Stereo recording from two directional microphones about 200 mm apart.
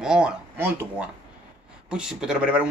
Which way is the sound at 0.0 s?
5° right (ahead or behind).